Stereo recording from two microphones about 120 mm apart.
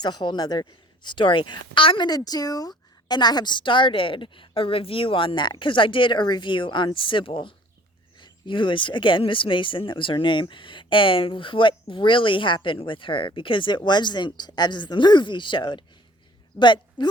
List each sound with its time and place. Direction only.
0.0 s speech: 35° left (ahead or behind)
2.0 s speech: 35° left (ahead or behind)